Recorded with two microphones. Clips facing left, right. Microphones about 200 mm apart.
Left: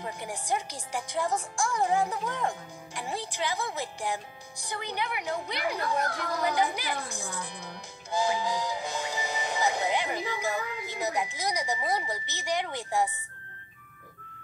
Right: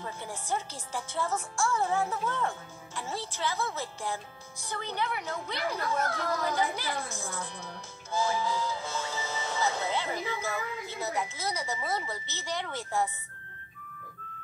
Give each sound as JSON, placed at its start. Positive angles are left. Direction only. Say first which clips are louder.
{"t": 0.0, "sound": "speech", "louder": "left 2 dB", "side_deg": 15}